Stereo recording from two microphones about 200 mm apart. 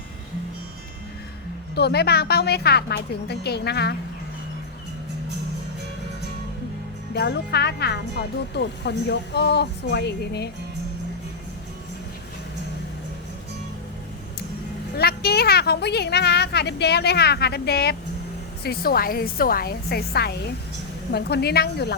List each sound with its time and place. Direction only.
1.7 s speech: 55° left (ahead or behind)
7.1 s speech: 55° left (ahead or behind)
14.9 s a woman's voice: 50° left (ahead or behind)